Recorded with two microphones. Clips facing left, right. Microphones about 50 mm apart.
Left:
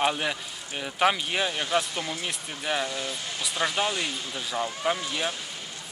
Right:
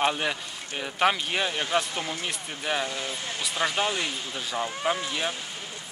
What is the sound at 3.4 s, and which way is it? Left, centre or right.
Speech, centre.